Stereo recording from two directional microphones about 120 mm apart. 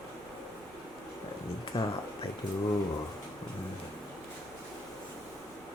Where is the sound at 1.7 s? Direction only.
55° left (ahead or behind).